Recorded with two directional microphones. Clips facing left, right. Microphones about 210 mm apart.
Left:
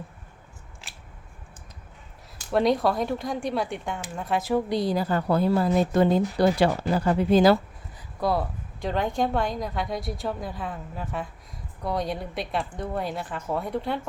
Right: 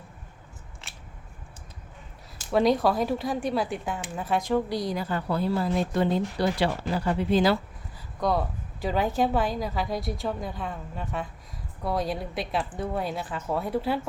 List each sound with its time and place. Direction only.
2.5 s a woman's voice: centre (ahead or behind)
4.7 s a woman's voice: 30° left (ahead or behind); by 7.5 s 45° left (ahead or behind)
8.2 s a woman's voice: centre (ahead or behind)